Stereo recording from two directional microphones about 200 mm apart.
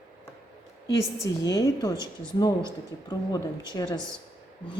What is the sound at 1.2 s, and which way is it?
Speech, 15° left (ahead or behind).